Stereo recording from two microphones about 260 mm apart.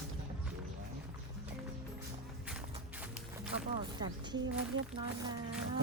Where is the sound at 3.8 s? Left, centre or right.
Centre.